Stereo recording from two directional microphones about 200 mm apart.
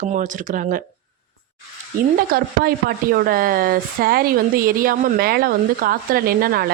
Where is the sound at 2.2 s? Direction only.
50° right (ahead or behind).